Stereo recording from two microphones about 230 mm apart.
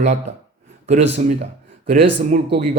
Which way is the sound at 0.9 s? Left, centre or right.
Right.